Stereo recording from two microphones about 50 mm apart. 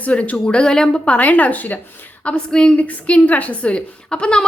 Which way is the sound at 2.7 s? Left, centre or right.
Left.